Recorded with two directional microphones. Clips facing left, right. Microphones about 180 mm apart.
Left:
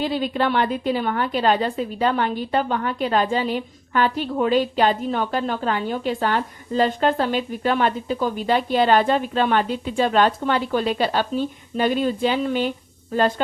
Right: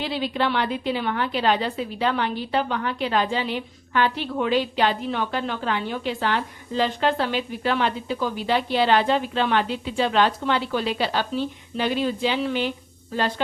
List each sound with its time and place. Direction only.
0.0 s a woman's voice: 45° left (ahead or behind)